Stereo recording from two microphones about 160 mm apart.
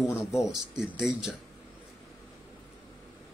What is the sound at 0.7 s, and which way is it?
Speech, 5° right (ahead or behind).